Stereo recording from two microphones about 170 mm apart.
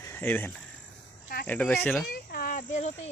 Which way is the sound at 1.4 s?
10° left (ahead or behind).